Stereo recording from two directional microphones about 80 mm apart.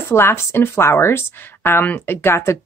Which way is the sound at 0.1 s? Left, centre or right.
Left.